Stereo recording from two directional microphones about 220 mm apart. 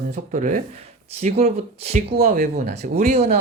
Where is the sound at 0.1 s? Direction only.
35° right (ahead or behind).